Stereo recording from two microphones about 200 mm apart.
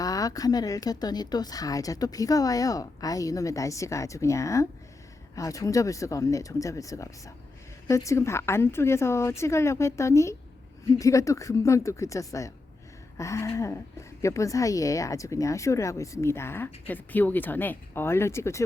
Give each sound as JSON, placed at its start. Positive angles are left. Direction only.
{"t": 0.0, "sound": "speech", "side_deg": 15}